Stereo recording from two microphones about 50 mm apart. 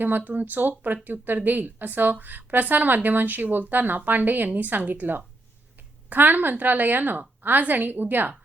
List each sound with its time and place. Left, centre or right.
0.0 s a woman's voice: right